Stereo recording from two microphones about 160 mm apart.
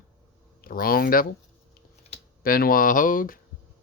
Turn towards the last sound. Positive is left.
turn(degrees=60)  # may be behind; listen again after turning